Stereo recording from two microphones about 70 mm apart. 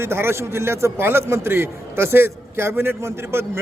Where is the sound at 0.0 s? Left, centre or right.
Right.